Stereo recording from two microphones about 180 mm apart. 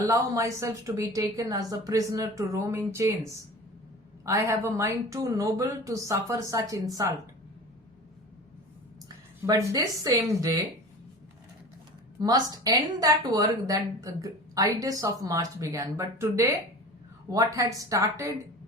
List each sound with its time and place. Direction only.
0.0 s a woman's voice: 15° right (ahead or behind)
9.0 s a woman's voice: 20° right (ahead or behind)
12.2 s a woman's voice: 20° right (ahead or behind)